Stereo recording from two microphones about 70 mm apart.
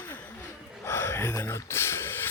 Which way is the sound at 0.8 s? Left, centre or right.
Left.